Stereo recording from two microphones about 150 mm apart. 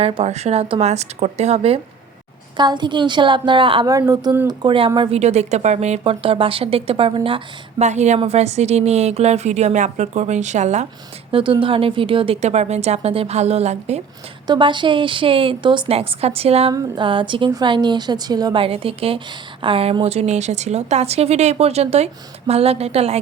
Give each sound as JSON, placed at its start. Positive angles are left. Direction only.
{"t": 0.0, "sound": "a woman's voice", "side_deg": -40}
{"t": 2.6, "sound": "a woman's voice", "side_deg": -30}
{"t": 4.9, "sound": "a woman's voice", "side_deg": -45}
{"t": 7.9, "sound": "a woman's voice", "side_deg": -50}
{"t": 11.3, "sound": "a woman's voice", "side_deg": -35}
{"t": 14.4, "sound": "a woman's voice", "side_deg": -30}
{"t": 16.7, "sound": "a woman's voice", "side_deg": -30}